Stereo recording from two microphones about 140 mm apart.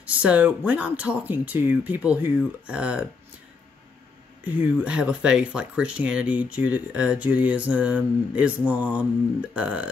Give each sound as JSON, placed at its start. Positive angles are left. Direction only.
{"t": 0.0, "sound": "speech", "side_deg": -10}
{"t": 4.5, "sound": "speech", "side_deg": -10}